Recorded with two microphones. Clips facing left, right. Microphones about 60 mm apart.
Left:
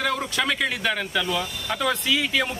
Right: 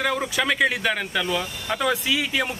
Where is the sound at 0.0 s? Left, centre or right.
Centre.